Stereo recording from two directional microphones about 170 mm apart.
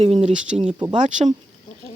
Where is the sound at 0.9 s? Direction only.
45° right (ahead or behind).